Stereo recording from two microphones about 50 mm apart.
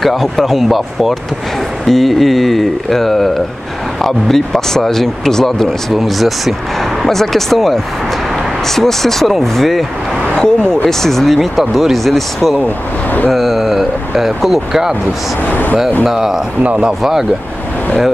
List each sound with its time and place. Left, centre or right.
0.0 s speech: centre
12.6 s speech: left
13.3 s speech: centre
15.4 s speech: left
16.1 s speech: centre
16.6 s speech: right
17.0 s speech: centre